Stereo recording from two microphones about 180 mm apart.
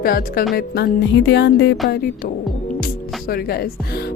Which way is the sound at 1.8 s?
60° left (ahead or behind).